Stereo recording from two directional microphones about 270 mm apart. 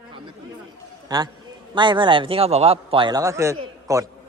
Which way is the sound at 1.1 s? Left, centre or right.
Centre.